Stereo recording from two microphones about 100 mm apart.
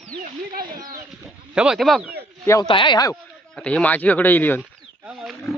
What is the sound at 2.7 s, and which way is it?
Speech, 55° left (ahead or behind).